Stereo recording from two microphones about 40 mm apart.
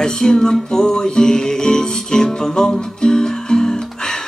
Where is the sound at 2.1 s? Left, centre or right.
Centre.